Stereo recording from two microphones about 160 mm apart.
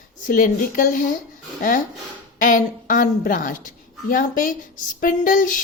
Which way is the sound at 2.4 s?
60° left (ahead or behind).